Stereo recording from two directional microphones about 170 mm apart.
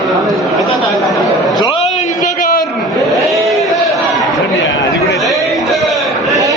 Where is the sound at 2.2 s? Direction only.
55° left (ahead or behind).